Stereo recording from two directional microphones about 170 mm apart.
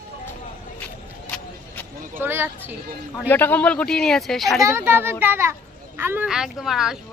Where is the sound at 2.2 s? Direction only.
15° right (ahead or behind).